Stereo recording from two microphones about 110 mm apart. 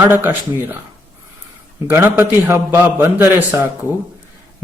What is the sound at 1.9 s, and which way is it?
A man's voice, 20° right (ahead or behind).